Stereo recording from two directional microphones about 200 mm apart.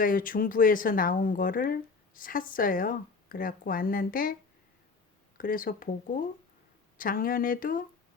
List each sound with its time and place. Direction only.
0.0 s speech: 45° left (ahead or behind)
5.4 s speech: 45° left (ahead or behind)